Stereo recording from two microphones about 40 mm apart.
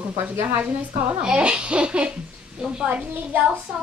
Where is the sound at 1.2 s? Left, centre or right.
Right.